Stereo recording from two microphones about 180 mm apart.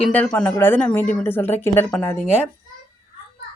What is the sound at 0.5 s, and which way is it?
Speech, 10° left (ahead or behind).